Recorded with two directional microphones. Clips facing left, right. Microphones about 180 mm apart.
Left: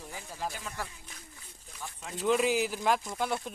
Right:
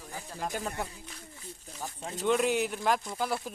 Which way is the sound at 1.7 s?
35° right (ahead or behind).